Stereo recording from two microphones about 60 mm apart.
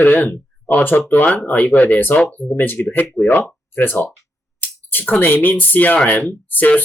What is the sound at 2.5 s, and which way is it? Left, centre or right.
Speech, left.